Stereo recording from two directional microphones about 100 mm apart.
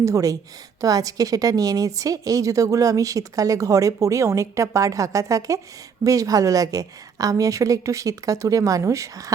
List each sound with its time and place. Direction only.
0.0 s a woman's voice: 35° right (ahead or behind)